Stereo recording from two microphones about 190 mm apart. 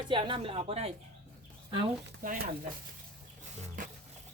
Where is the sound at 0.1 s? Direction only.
25° right (ahead or behind).